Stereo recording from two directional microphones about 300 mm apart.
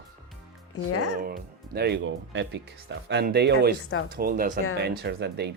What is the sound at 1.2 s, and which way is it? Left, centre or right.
Speech, right.